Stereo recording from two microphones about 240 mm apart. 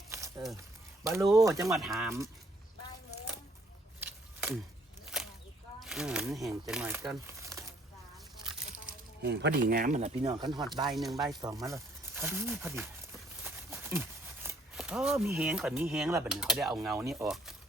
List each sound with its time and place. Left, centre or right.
1.0 s speech: centre
1.7 s speech: centre
4.0 s a sound: centre
5.8 s speech: centre
8.4 s a sound: right
9.2 s speech: right
10.4 s speech: centre
10.8 s speech: centre
11.4 s speech: centre
13.4 s a sound: centre
16.1 s speech: centre